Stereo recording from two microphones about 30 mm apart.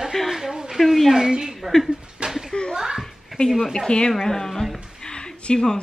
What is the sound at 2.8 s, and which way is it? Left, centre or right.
Chuckle, right.